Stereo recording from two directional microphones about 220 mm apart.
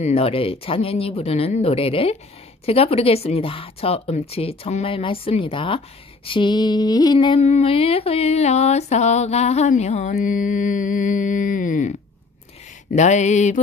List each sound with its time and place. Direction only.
0.0 s a woman's voice: 25° left (ahead or behind)